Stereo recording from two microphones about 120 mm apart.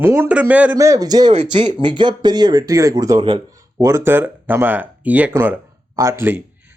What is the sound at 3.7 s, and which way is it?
Speech, 25° right (ahead or behind).